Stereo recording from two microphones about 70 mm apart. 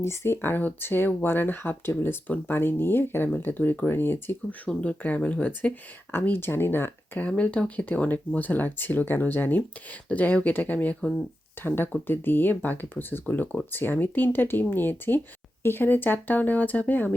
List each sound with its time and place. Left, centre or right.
0.0 s speech: left
4.7 s speech: centre
6.1 s speech: left
7.3 s speech: centre